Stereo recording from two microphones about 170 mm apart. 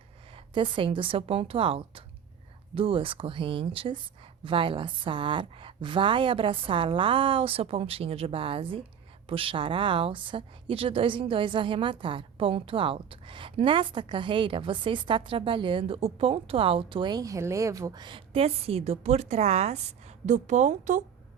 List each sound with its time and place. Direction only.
0.3 s a woman's voice: 30° right (ahead or behind)